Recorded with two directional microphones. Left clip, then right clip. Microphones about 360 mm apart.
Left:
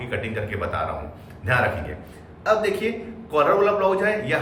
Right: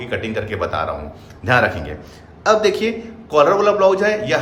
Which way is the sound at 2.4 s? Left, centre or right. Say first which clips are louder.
Right 6 dB; centre.